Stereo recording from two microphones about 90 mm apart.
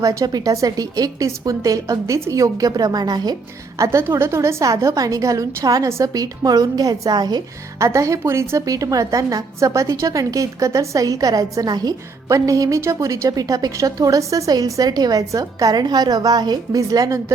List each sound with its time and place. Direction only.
0.0 s a woman's voice: 40° right (ahead or behind)
3.8 s a woman's voice: 30° right (ahead or behind); by 7.4 s 50° right (ahead or behind)
7.8 s a woman's voice: 35° right (ahead or behind)